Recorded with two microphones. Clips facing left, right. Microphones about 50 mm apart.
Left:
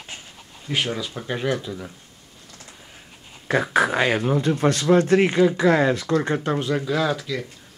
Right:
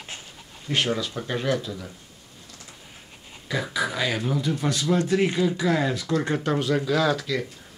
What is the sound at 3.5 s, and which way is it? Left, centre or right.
Speech, left.